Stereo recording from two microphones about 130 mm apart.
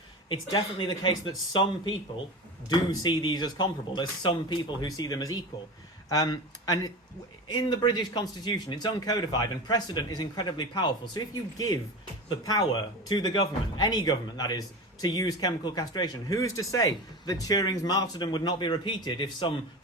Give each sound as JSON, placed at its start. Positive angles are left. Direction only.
{"t": 0.3, "sound": "speech", "side_deg": 35}
{"t": 13.1, "sound": "speech", "side_deg": 30}